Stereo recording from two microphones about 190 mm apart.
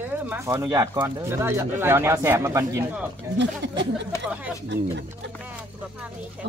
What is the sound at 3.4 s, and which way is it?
Speech, 65° right (ahead or behind).